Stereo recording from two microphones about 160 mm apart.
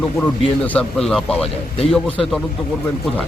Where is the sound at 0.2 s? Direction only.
10° left (ahead or behind).